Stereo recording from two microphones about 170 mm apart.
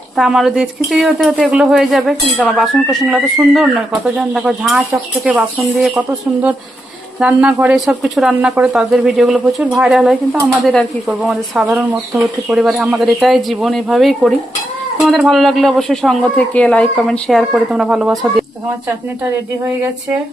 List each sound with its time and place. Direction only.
0.2 s speech: centre (ahead or behind)